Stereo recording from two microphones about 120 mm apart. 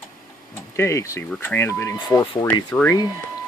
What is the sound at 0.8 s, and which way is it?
Speech, 25° left (ahead or behind).